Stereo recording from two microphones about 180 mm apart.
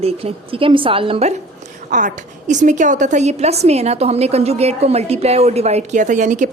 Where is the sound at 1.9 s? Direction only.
45° right (ahead or behind).